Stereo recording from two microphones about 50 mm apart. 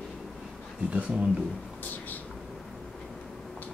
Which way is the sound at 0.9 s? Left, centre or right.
Right.